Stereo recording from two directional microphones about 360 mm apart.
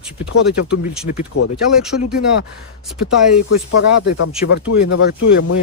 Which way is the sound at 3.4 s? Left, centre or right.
Left.